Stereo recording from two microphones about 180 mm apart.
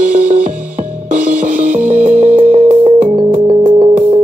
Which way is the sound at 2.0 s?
40° right (ahead or behind).